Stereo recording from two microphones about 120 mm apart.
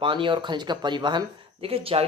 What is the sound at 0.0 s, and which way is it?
Speech, 45° right (ahead or behind).